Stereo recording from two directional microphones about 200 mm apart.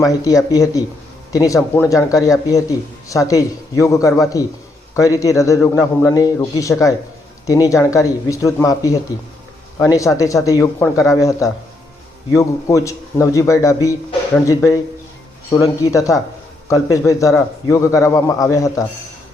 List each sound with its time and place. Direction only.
0.0 s a man's voice: 15° left (ahead or behind)